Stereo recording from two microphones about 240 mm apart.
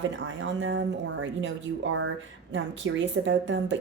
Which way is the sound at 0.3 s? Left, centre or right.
Right.